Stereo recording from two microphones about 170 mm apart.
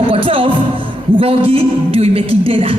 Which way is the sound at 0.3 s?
30° right (ahead or behind).